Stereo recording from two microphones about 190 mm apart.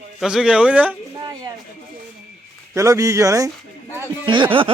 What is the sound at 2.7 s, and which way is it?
Speech, 15° right (ahead or behind).